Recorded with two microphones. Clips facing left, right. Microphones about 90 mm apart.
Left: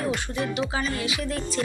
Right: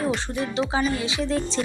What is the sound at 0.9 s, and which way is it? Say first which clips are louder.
Speech: right 4 dB; 25° right (ahead or behind).